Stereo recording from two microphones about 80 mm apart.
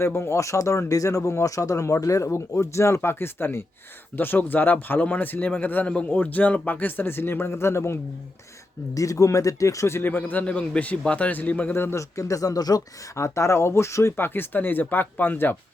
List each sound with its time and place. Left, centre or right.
0.0 s a man's voice: left
9.0 s a man's voice: left; by 11.8 s centre
11.8 s speech: left
13.1 s a man's voice: left